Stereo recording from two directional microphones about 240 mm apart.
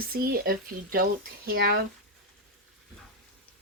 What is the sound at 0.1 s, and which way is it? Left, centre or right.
Speech, right.